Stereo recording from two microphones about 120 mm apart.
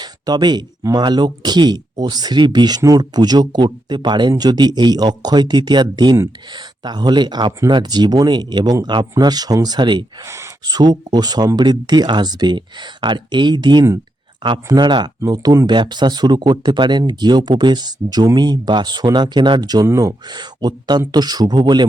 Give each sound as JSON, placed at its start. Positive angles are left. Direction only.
{"t": 0.0, "sound": "speech", "side_deg": -35}
{"t": 10.2, "sound": "speech", "side_deg": -25}
{"t": 10.7, "sound": "speech", "side_deg": -35}